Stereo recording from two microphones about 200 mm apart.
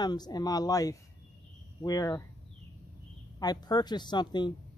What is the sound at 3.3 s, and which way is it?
Speech, 20° left (ahead or behind).